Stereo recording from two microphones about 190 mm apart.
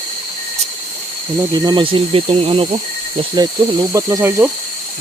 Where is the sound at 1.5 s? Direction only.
20° right (ahead or behind).